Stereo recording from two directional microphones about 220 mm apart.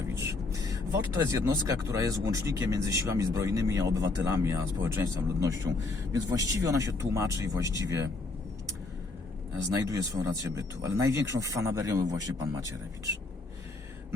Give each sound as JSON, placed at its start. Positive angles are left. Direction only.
{"t": 0.1, "sound": "vehicle", "side_deg": -15}
{"t": 2.2, "sound": "speech", "side_deg": -15}
{"t": 9.9, "sound": "speech", "side_deg": -15}